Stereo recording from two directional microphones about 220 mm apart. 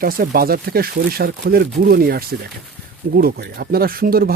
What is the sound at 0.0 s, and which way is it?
Speech, 40° right (ahead or behind).